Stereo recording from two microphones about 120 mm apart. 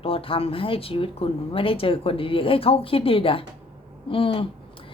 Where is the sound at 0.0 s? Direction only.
50° left (ahead or behind).